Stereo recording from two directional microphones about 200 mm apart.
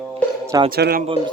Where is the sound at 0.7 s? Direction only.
50° right (ahead or behind).